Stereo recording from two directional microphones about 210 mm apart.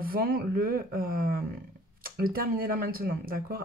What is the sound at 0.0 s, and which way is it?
Speech, 45° right (ahead or behind).